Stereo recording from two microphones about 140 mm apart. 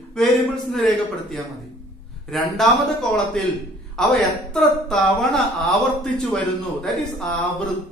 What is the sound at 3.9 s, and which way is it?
A man's voice, 5° left (ahead or behind).